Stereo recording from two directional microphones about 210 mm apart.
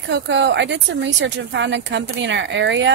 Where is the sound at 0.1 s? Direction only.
60° right (ahead or behind).